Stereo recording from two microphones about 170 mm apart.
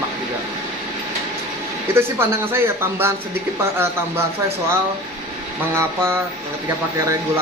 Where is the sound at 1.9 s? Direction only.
15° right (ahead or behind).